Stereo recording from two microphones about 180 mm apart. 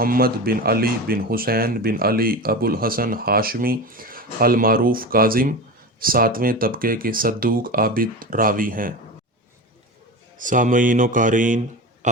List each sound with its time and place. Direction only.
0.0 s speech: 55° right (ahead or behind)
10.3 s a man's voice: 45° right (ahead or behind)